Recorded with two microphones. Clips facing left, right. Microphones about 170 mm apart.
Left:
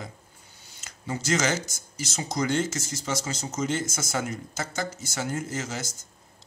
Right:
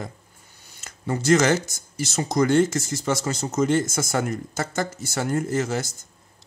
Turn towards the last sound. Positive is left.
turn(degrees=-55)  # may be behind; listen again after turning